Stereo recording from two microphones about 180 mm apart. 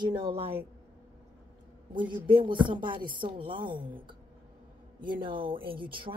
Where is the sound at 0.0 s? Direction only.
30° right (ahead or behind).